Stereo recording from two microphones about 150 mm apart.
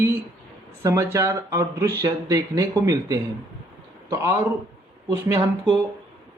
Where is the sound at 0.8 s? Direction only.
20° right (ahead or behind).